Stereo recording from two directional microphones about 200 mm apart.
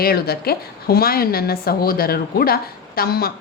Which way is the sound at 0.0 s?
50° left (ahead or behind).